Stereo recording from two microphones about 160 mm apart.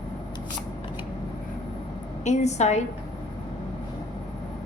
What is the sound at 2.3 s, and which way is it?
Speech, 45° left (ahead or behind).